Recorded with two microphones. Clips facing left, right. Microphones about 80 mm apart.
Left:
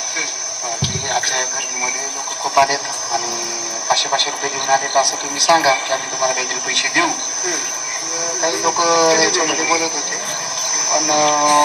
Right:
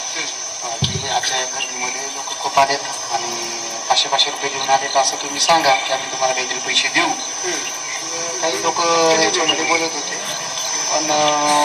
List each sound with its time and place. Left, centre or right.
0.8 s music: left
2.4 s speech: left